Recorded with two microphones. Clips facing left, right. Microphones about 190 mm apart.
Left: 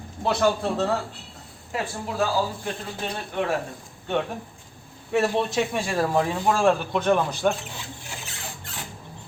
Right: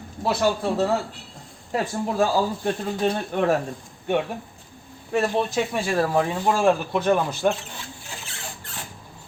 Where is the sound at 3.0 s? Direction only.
45° right (ahead or behind).